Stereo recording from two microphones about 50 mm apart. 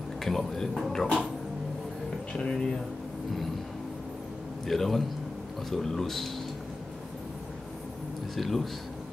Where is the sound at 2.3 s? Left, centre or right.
Centre.